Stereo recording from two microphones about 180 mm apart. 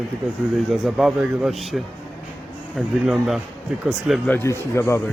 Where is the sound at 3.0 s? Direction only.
Centre (ahead or behind).